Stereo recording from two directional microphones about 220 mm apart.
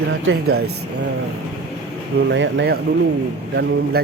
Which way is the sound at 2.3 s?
55° right (ahead or behind).